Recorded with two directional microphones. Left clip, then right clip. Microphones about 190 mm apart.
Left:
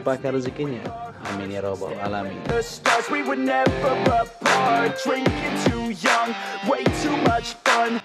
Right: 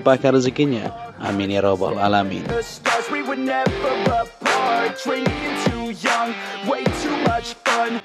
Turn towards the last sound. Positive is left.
turn(degrees=0)  # may be behind; listen again after turning